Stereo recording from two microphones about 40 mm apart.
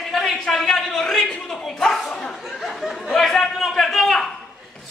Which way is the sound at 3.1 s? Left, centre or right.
Centre.